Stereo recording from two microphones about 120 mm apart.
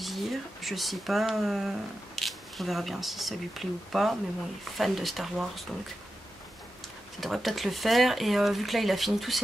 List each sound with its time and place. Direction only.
0.0 s speech: centre (ahead or behind)
7.2 s speech: centre (ahead or behind)